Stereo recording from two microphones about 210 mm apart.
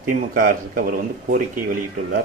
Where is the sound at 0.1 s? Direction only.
45° right (ahead or behind).